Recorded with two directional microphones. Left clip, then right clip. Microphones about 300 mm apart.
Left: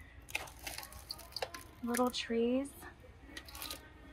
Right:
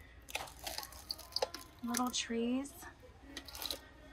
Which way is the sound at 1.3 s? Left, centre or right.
Right.